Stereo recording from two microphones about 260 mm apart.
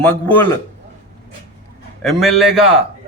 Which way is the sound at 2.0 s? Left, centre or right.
Centre.